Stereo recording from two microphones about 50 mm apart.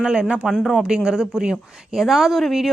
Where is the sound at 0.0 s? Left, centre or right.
Centre.